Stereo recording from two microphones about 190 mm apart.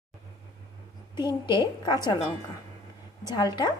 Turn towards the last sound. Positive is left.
turn(degrees=20)  # may be behind; listen again after turning